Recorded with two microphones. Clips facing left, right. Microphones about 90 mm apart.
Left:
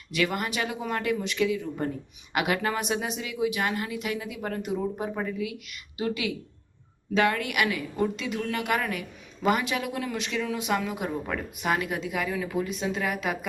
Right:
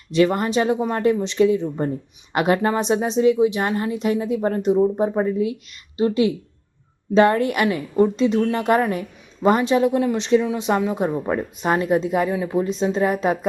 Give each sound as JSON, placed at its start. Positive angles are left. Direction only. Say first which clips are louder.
{"t": 0.1, "sound": "a woman's voice", "louder": "right 10 dB", "side_deg": -30}